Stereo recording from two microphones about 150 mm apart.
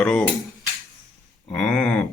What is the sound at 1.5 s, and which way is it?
Speech, 5° left (ahead or behind).